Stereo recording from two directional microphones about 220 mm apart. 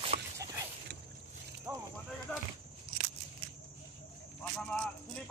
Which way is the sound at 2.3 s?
5° left (ahead or behind).